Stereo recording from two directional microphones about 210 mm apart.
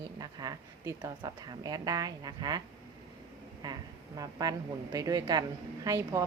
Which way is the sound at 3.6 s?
20° right (ahead or behind).